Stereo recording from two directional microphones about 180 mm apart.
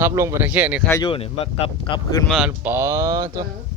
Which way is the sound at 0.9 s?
25° left (ahead or behind).